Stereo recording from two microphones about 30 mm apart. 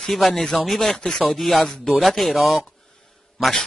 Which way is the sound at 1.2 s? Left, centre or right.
Centre.